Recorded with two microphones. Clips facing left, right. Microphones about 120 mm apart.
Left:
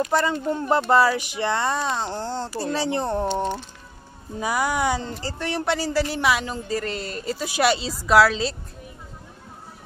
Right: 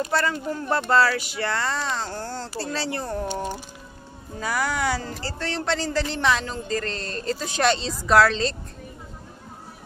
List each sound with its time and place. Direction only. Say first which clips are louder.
0.0 s speech: left 3 dB; 15° left (ahead or behind)
4.4 s speech: left 2 dB; 15° left (ahead or behind)